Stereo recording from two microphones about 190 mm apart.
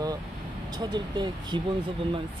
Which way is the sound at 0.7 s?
25° right (ahead or behind).